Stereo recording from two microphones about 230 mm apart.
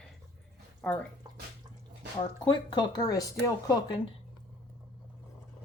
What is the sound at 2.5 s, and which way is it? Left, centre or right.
Speech, centre.